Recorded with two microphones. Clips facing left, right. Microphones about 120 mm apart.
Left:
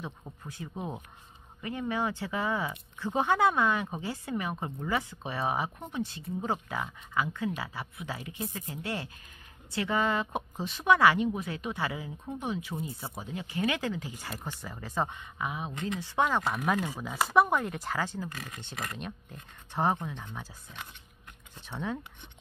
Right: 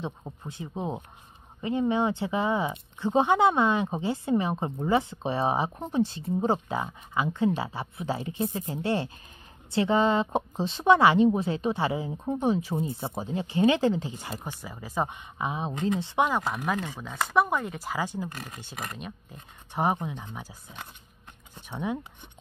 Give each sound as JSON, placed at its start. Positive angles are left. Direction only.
{"t": 0.0, "sound": "speech", "side_deg": -25}
{"t": 12.1, "sound": "speech", "side_deg": -35}
{"t": 14.4, "sound": "speech", "side_deg": -10}
{"t": 15.3, "sound": "speech", "side_deg": -25}
{"t": 16.3, "sound": "speech", "side_deg": -5}
{"t": 18.6, "sound": "speech", "side_deg": -10}
{"t": 19.7, "sound": "speech", "side_deg": -15}